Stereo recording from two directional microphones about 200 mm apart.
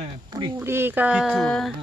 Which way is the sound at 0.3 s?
20° right (ahead or behind).